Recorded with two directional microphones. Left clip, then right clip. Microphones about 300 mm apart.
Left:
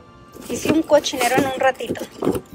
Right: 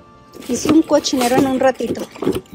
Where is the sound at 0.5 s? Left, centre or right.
Centre.